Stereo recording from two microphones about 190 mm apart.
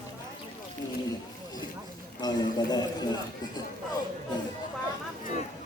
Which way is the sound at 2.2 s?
20° left (ahead or behind).